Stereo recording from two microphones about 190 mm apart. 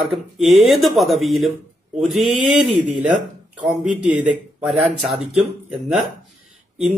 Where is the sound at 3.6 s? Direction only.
5° right (ahead or behind).